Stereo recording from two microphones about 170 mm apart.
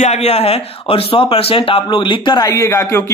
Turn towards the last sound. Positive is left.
turn(degrees=15)  # may be behind; listen again after turning